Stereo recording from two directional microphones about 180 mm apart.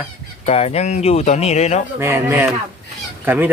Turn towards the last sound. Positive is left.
turn(degrees=-10)  # may be behind; listen again after turning